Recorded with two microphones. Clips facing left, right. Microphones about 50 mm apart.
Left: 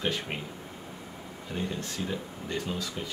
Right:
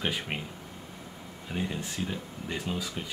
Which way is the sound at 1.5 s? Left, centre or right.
Centre.